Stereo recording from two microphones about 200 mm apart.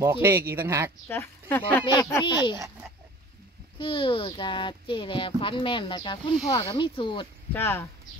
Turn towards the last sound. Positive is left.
turn(degrees=10)  # may be behind; listen again after turning